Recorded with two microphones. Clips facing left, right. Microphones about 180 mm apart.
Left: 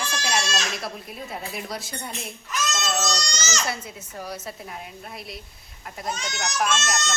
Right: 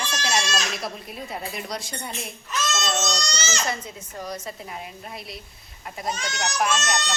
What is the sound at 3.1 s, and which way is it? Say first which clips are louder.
Speech: right 1 dB; 30° right (ahead or behind).